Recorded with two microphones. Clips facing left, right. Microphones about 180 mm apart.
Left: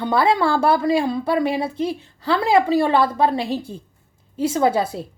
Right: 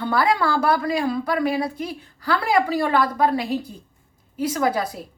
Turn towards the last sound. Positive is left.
turn(degrees=25)  # may be behind; listen again after turning